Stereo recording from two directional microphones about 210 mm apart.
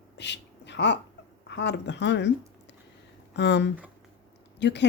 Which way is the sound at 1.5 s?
55° left (ahead or behind).